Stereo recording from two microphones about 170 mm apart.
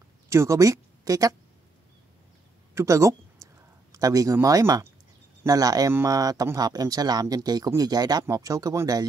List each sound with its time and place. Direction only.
0.3 s speech: 15° right (ahead or behind)
2.7 s a sound: 20° right (ahead or behind)
3.9 s speech: 20° right (ahead or behind)